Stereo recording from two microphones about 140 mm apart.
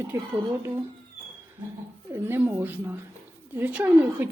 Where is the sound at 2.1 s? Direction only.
15° right (ahead or behind).